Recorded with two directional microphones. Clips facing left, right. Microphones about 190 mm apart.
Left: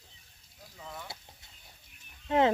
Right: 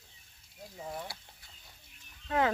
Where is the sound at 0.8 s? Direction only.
30° right (ahead or behind).